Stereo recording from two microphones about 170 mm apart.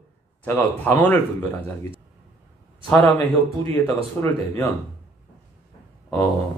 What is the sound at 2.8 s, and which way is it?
Speech, 10° left (ahead or behind).